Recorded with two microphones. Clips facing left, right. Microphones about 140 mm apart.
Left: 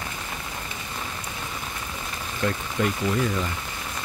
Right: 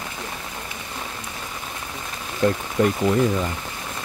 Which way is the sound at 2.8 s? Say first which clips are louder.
Right 6 dB; 35° right (ahead or behind).